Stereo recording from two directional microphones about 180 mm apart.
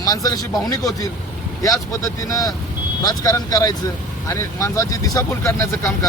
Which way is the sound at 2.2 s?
20° left (ahead or behind).